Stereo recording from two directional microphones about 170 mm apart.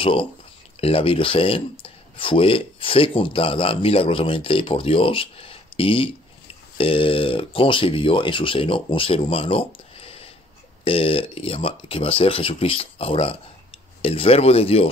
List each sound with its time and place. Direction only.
0.0 s speech: 30° left (ahead or behind)